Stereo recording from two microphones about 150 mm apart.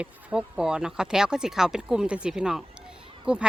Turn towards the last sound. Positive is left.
turn(degrees=-5)  # may be behind; listen again after turning